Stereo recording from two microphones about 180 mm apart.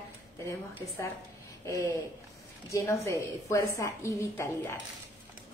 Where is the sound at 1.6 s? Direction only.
15° left (ahead or behind).